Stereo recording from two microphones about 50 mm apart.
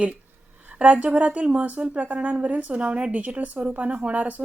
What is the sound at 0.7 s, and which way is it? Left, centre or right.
A woman's voice, right.